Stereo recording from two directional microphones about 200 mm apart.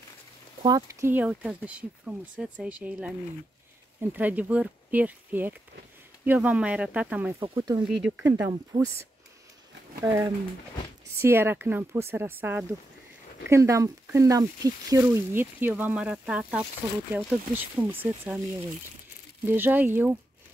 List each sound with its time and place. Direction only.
0.6 s speech: 20° right (ahead or behind)
7.4 s speech: 20° right (ahead or behind)
10.0 s speech: 15° right (ahead or behind)
19.4 s speech: 10° right (ahead or behind)